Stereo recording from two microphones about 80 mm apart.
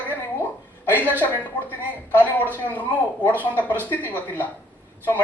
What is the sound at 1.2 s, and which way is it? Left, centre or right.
Speech, left.